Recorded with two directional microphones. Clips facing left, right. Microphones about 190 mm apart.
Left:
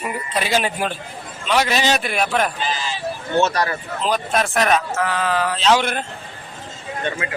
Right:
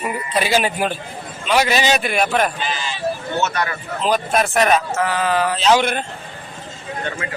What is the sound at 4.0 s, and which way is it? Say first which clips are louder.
A man's voice: right 3 dB; 5° right (ahead or behind).